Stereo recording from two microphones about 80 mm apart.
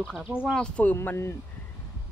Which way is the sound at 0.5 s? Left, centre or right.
Centre.